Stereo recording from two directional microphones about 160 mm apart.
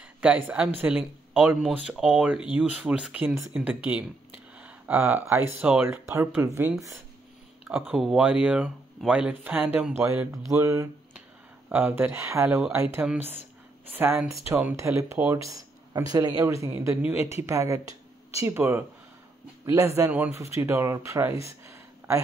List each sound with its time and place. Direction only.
0.2 s speech: 5° right (ahead or behind)
7.6 s speech: 5° right (ahead or behind)